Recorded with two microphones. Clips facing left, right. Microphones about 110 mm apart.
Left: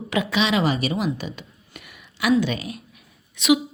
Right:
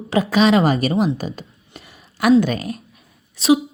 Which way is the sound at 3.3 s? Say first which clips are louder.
Right 3 dB; 35° right (ahead or behind).